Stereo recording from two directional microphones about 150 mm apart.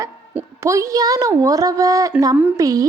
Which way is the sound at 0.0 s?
20° right (ahead or behind).